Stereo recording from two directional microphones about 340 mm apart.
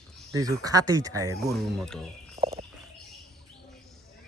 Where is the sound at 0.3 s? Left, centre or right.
Centre.